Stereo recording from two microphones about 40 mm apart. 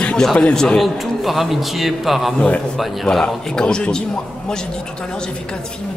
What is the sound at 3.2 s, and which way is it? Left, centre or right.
Speech, left.